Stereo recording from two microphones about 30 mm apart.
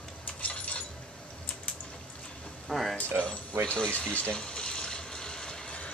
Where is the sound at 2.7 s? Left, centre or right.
Centre.